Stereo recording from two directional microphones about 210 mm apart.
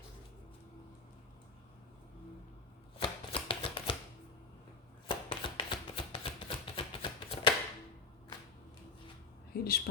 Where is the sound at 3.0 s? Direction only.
25° left (ahead or behind).